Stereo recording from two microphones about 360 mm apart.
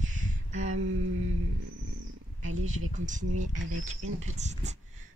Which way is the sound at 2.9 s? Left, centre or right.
Right.